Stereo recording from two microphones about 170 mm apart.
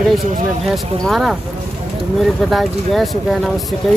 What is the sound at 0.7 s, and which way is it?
Speech, centre (ahead or behind).